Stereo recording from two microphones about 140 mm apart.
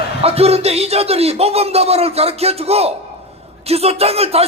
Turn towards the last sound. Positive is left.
turn(degrees=-45)  # may be behind; listen again after turning